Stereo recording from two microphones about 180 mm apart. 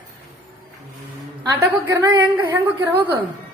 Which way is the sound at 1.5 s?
15° right (ahead or behind).